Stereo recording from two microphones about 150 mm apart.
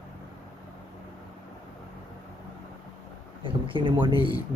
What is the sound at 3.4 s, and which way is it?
Speech, 35° right (ahead or behind).